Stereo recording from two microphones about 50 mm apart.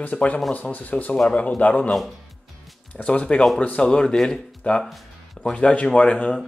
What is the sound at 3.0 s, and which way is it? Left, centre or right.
Speech, left.